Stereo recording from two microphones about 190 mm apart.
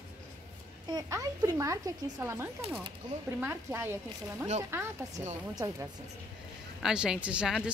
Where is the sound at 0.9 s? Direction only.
20° right (ahead or behind).